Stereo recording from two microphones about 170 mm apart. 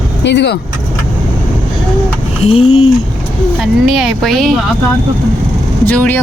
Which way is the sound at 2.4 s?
35° left (ahead or behind).